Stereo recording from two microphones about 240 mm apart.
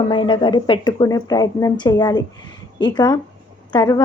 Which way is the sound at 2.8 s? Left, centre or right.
Centre.